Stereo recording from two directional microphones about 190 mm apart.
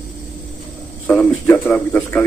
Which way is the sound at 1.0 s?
10° left (ahead or behind).